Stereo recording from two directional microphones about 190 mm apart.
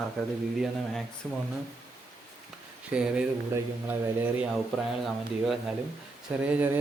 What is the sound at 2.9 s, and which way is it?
Speech, 5° right (ahead or behind).